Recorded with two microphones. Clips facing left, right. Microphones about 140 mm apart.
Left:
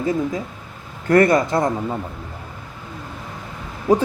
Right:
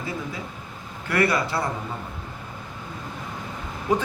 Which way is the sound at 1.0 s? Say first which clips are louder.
Left 8 dB; 45° left (ahead or behind).